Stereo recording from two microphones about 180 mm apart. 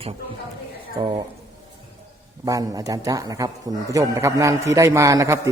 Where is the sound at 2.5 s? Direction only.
20° right (ahead or behind).